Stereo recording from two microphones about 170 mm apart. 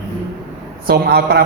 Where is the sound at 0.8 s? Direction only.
70° right (ahead or behind).